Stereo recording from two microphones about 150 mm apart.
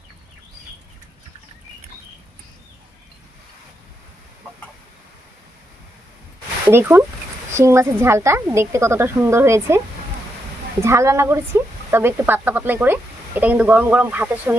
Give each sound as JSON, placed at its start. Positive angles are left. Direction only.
{"t": 6.7, "sound": "speech", "side_deg": -15}
{"t": 10.8, "sound": "speech", "side_deg": -20}